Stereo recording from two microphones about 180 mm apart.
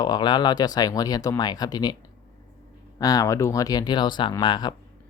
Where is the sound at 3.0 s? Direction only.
20° left (ahead or behind).